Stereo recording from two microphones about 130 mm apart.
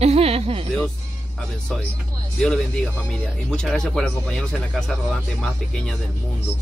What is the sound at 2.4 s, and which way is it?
Speech, 5° left (ahead or behind).